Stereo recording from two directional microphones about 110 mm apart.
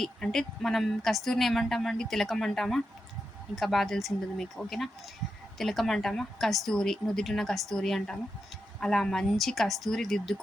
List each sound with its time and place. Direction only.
0.0 s a woman's voice: 5° left (ahead or behind)